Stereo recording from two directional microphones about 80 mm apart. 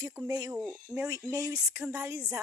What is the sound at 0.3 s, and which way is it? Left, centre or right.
Speech, right.